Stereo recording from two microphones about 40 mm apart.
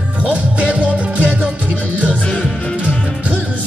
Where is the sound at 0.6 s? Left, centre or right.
Right.